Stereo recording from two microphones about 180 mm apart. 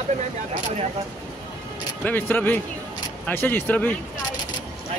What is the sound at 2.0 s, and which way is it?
Speech, 10° left (ahead or behind).